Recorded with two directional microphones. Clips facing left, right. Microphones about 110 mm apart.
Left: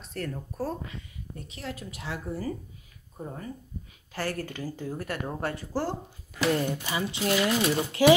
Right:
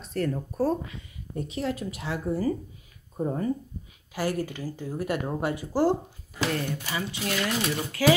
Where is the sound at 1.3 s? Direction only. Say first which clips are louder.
Right 9 dB; 15° right (ahead or behind).